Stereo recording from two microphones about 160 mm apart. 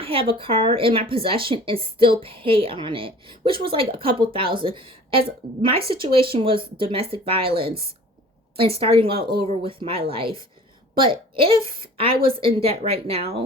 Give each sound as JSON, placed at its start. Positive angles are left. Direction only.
{"t": 0.0, "sound": "a woman's voice", "side_deg": -35}
{"t": 7.6, "sound": "a woman's voice", "side_deg": -70}
{"t": 8.5, "sound": "a woman's voice", "side_deg": -35}